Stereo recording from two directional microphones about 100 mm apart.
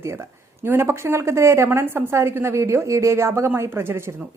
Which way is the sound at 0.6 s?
25° right (ahead or behind).